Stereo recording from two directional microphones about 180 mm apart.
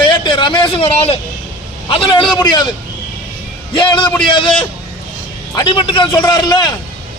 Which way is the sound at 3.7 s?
25° left (ahead or behind).